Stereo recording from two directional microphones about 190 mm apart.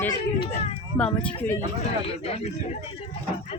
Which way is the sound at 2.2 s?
35° left (ahead or behind).